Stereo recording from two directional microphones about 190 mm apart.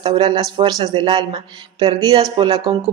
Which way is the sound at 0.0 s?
25° right (ahead or behind).